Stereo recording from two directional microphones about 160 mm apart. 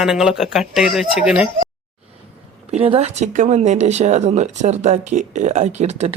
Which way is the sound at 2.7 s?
40° right (ahead or behind).